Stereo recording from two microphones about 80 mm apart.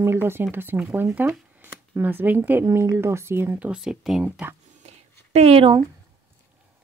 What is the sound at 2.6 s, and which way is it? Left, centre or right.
Speech, right.